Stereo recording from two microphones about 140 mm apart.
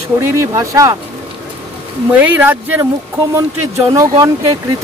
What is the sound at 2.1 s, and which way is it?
Speech, 10° right (ahead or behind).